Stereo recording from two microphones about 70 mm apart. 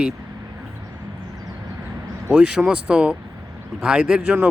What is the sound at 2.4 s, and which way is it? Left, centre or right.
Speech, centre.